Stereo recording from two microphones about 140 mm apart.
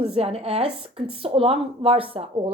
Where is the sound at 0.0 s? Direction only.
45° right (ahead or behind).